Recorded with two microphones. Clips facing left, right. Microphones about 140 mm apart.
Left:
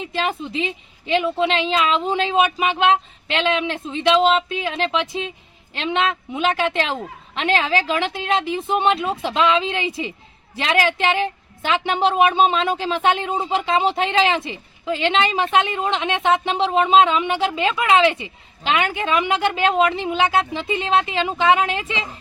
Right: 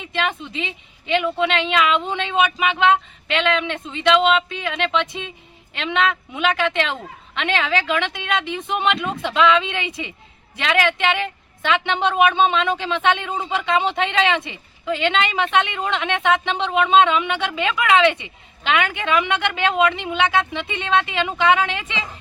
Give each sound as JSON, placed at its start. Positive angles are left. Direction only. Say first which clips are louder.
{"t": 0.0, "sound": "a woman's voice", "louder": "left 1 dB", "side_deg": 35}